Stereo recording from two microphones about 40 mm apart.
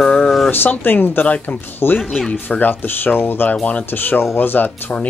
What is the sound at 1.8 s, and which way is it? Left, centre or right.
Speech, left.